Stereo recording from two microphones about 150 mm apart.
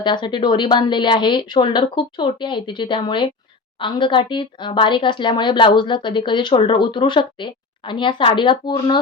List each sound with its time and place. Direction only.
0.0 s speech: 30° left (ahead or behind)